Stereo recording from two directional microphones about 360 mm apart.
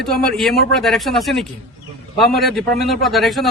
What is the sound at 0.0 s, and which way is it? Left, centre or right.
A man's voice, centre.